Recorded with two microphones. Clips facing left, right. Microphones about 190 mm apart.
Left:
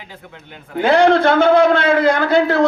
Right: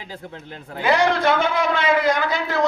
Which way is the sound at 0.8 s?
60° left (ahead or behind).